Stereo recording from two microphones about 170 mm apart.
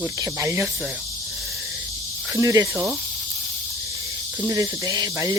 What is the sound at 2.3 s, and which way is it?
Speech, 20° right (ahead or behind).